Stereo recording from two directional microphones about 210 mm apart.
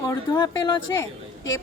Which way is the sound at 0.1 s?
15° left (ahead or behind).